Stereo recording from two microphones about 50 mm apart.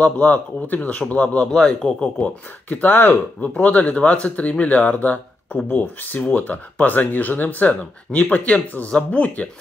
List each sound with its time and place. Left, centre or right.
0.0 s a man's voice: left
1.5 s speech: centre
2.2 s a man's voice: left